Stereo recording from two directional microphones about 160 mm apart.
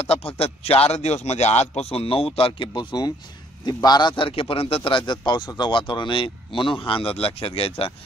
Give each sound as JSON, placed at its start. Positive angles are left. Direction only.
{"t": 0.0, "sound": "a man's voice", "side_deg": 40}